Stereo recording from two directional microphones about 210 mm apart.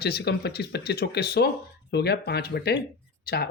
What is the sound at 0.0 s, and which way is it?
Speech, 50° left (ahead or behind).